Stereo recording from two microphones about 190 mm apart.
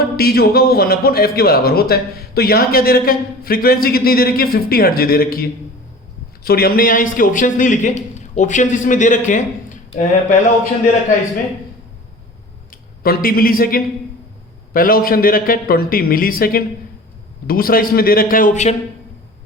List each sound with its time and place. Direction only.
0.2 s a man's voice: 55° left (ahead or behind)
12.7 s a man's voice: 50° left (ahead or behind)